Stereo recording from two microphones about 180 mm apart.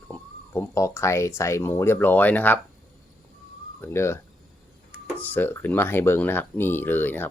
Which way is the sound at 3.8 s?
15° left (ahead or behind).